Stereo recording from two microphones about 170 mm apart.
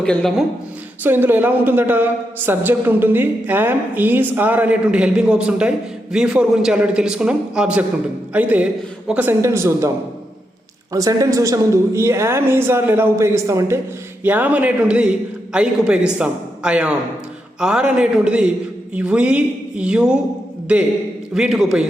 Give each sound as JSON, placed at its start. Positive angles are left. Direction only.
{"t": 0.0, "sound": "a man's voice", "side_deg": 5}
{"t": 1.0, "sound": "a woman's voice", "side_deg": -10}
{"t": 10.9, "sound": "a woman's voice", "side_deg": -20}
{"t": 21.3, "sound": "a man's voice", "side_deg": -5}